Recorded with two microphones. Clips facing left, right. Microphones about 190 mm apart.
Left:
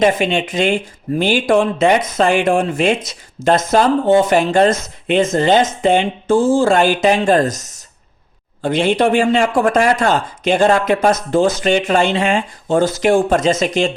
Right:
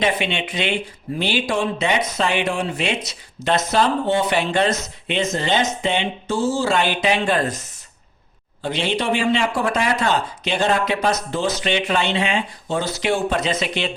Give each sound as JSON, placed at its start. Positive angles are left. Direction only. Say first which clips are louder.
{"t": 0.0, "sound": "speech", "louder": "left 7 dB", "side_deg": 45}